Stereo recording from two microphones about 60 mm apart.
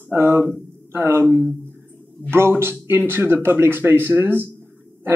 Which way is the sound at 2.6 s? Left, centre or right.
Right.